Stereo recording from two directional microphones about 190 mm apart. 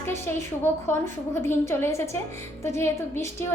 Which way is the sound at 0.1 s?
10° left (ahead or behind).